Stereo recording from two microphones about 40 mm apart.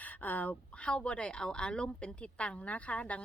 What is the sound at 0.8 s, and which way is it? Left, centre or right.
A woman's voice, left.